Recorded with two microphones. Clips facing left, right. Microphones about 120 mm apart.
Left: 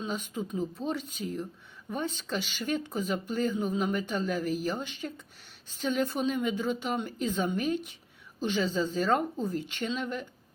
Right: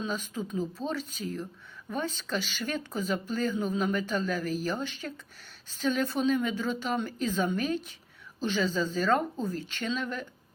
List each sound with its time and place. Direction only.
0.0 s speech: 20° left (ahead or behind)